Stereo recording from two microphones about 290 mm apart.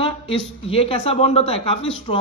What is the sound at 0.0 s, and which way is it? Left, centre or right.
A man's voice, centre.